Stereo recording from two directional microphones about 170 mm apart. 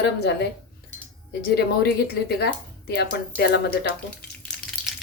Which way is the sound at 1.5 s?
75° left (ahead or behind).